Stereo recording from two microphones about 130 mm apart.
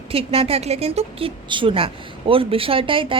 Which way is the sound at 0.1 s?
50° right (ahead or behind).